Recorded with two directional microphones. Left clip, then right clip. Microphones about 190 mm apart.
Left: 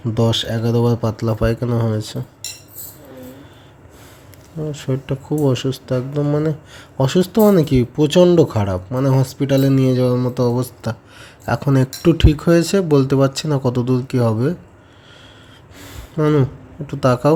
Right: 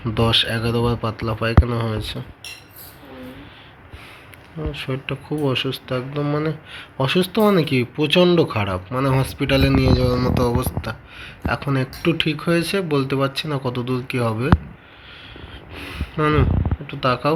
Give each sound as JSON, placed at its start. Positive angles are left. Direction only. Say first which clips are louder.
{"t": 0.1, "sound": "speech", "louder": "right 1 dB", "side_deg": 25}
{"t": 4.7, "sound": "speech", "louder": "left 2 dB", "side_deg": 35}
{"t": 10.6, "sound": "speech", "louder": "left 1 dB", "side_deg": 40}
{"t": 15.7, "sound": "a sound", "louder": "even", "side_deg": 35}
{"t": 16.8, "sound": "speech", "louder": "left 4 dB", "side_deg": 50}